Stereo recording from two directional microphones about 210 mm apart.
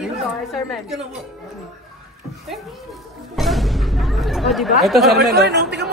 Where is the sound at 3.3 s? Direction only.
Centre (ahead or behind).